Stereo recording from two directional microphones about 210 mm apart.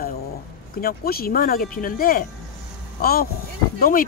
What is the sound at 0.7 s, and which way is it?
Speech, 45° left (ahead or behind).